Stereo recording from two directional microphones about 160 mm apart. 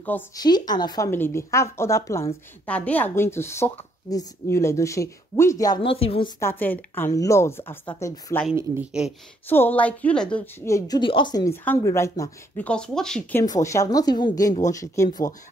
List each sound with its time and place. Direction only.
0.4 s speech: 25° left (ahead or behind)
2.6 s speech: 10° left (ahead or behind)
5.8 s a woman's voice: 35° left (ahead or behind)
6.4 s speech: 10° left (ahead or behind)
7.8 s speech: 25° left (ahead or behind)
8.3 s speech: 15° left (ahead or behind)
9.5 s speech: 10° left (ahead or behind)
11.0 s speech: 30° left (ahead or behind); by 13.4 s 5° left (ahead or behind)
13.4 s speech: 20° left (ahead or behind)